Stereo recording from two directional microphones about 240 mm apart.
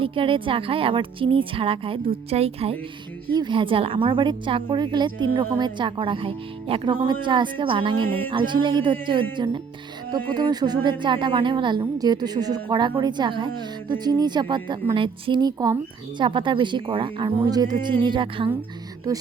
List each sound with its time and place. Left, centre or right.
0.0 s a woman's voice: right
7.9 s speech: centre
8.3 s a woman's voice: centre